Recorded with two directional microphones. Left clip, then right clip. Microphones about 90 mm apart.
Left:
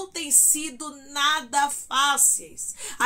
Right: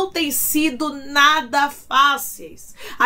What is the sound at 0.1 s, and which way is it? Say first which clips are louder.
Speech: right 3 dB; 25° left (ahead or behind).